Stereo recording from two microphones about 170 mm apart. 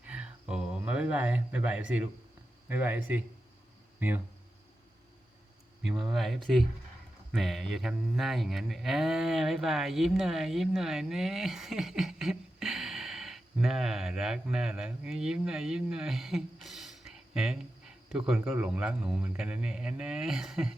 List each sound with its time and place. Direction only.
0.0 s a sound: 5° right (ahead or behind)
2.6 s speech: 10° right (ahead or behind)
5.8 s cattle: centre (ahead or behind)